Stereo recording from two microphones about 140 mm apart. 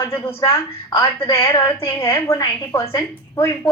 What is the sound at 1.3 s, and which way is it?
A woman's voice, 25° left (ahead or behind).